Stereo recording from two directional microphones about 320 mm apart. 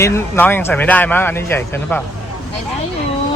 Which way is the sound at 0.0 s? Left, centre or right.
Centre.